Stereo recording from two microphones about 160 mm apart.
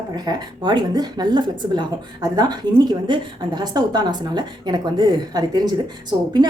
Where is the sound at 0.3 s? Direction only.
25° right (ahead or behind).